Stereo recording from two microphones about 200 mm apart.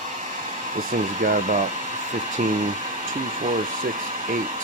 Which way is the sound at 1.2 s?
40° right (ahead or behind).